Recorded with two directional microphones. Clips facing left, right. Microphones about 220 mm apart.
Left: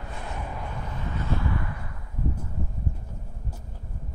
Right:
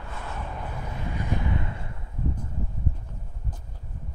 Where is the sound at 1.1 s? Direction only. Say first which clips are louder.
Even; 15° right (ahead or behind).